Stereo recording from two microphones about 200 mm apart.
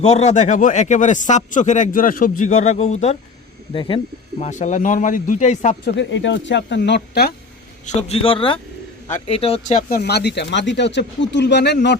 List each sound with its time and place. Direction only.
0.0 s speech: 35° left (ahead or behind)
5.8 s speech: 60° left (ahead or behind)
7.9 s speech: 30° left (ahead or behind)
10.0 s speech: 55° left (ahead or behind)